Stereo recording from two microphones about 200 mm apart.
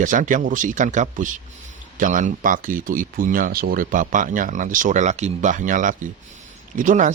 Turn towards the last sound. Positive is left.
turn(degrees=-40)  # may be behind; listen again after turning